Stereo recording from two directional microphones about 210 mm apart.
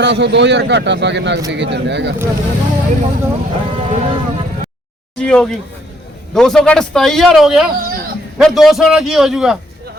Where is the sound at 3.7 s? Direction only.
25° right (ahead or behind).